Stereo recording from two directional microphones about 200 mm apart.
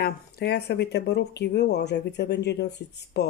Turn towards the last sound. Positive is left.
turn(degrees=55)  # may be behind; listen again after turning